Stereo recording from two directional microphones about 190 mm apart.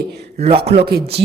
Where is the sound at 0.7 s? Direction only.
55° right (ahead or behind).